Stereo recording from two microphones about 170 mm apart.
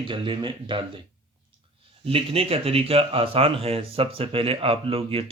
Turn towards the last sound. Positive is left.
turn(degrees=-30)  # may be behind; listen again after turning